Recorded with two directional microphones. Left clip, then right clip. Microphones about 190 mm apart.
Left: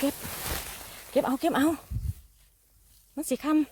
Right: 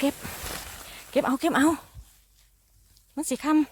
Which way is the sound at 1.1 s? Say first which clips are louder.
Right 2 dB; 5° right (ahead or behind).